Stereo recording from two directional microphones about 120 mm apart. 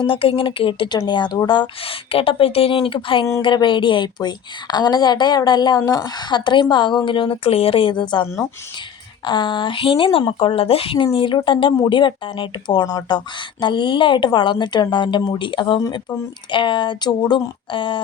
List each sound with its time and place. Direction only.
0.0 s speech: 50° left (ahead or behind)